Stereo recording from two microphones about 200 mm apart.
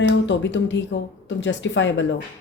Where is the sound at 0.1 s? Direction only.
65° left (ahead or behind).